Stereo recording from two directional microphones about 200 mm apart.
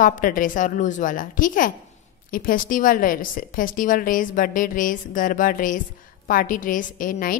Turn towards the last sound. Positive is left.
turn(degrees=45)  # may be behind; listen again after turning